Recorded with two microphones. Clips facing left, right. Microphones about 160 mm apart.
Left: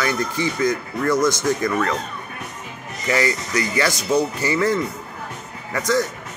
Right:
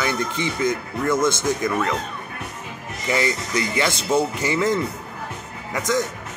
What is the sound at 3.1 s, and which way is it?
Speech, 20° right (ahead or behind).